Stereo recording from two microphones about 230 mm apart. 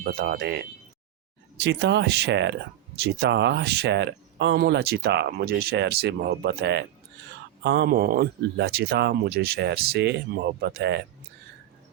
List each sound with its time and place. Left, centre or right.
0.0 s speech: right